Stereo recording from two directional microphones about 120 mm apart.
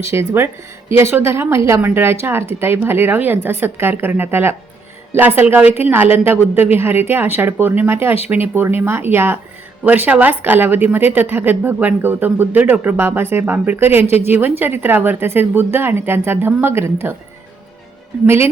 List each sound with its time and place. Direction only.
0.1 s a woman's voice: 20° right (ahead or behind)